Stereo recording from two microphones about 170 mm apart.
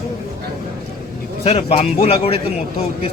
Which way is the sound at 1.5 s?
40° left (ahead or behind).